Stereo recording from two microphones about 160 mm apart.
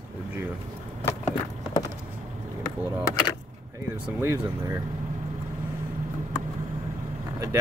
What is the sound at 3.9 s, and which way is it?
Speech, 15° right (ahead or behind).